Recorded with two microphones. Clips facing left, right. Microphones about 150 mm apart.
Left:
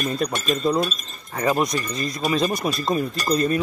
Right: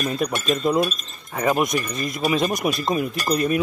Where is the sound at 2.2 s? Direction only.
15° right (ahead or behind).